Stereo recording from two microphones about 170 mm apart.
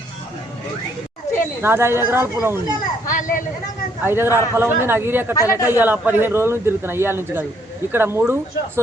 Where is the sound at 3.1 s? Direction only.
50° left (ahead or behind).